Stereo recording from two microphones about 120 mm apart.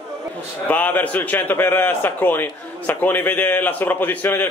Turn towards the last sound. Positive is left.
turn(degrees=15)  # may be behind; listen again after turning